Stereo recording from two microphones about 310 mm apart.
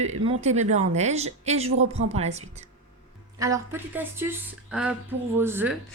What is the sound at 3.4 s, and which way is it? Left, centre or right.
A woman's voice, centre.